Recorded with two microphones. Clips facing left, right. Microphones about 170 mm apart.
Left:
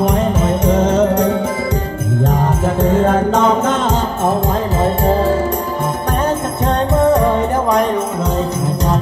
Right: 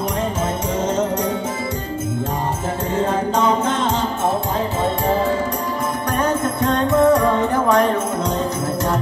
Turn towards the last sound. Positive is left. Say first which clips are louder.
# left 1 dB
turn(degrees=25)  # may be behind; listen again after turning